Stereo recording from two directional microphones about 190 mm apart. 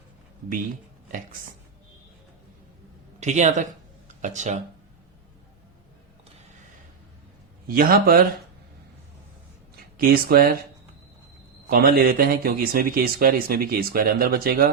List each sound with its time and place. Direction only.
3.2 s speech: 35° right (ahead or behind)
7.7 s speech: 50° right (ahead or behind)
10.0 s speech: 50° right (ahead or behind)
11.7 s speech: 50° right (ahead or behind)